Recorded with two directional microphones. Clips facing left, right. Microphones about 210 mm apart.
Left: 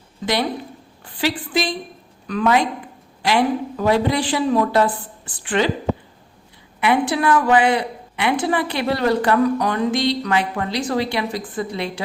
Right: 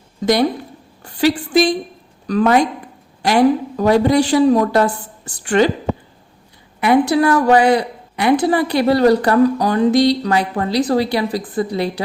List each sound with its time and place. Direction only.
1.0 s a woman's voice: 45° right (ahead or behind)
6.7 s a woman's voice: 40° right (ahead or behind)